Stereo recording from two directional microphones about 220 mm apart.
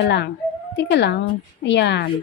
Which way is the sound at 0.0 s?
50° left (ahead or behind).